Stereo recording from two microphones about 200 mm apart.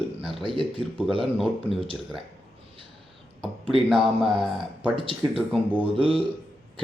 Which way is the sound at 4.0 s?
Centre (ahead or behind).